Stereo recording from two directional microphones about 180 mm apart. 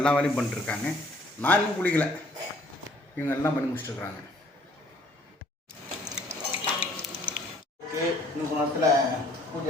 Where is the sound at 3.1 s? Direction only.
10° left (ahead or behind).